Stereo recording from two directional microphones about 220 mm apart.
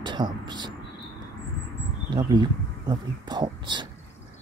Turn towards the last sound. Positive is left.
turn(degrees=-20)  # may be behind; listen again after turning